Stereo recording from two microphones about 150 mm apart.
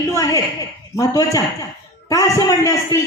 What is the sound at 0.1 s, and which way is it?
A man's voice, 25° left (ahead or behind).